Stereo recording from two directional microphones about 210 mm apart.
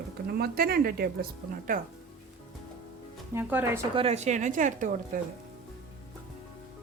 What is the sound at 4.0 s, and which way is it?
Speech, 30° right (ahead or behind).